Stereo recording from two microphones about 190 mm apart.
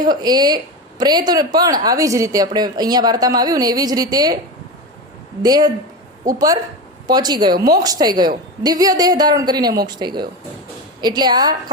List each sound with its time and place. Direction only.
0.1 s speech: 20° right (ahead or behind)
5.4 s speech: 20° right (ahead or behind)